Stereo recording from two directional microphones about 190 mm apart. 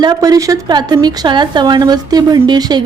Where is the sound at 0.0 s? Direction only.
20° right (ahead or behind).